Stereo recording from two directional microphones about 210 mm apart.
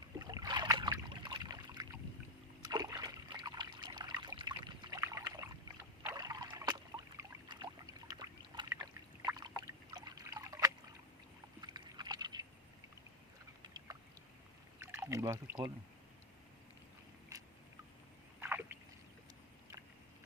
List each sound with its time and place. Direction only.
0.2 s boat: 20° right (ahead or behind)
2.6 s a sound: 20° right (ahead or behind)
6.1 s boat: 20° right (ahead or behind)
11.6 s rowboat: 20° right (ahead or behind)
14.8 s a sound: 15° right (ahead or behind)
18.3 s rowboat: 10° right (ahead or behind)